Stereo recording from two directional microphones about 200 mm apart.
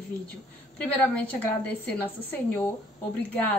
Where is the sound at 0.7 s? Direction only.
5° left (ahead or behind).